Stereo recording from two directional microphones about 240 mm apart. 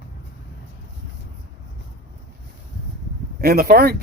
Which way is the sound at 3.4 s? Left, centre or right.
Right.